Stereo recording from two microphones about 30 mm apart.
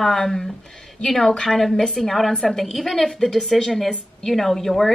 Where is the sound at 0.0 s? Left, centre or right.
Centre.